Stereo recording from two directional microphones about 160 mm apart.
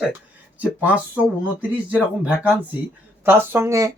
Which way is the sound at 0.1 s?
10° right (ahead or behind).